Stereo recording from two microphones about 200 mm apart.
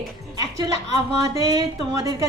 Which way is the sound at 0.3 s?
20° right (ahead or behind).